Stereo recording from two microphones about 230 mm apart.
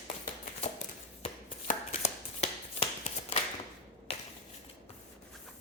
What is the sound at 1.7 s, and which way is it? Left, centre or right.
Shuffle, left.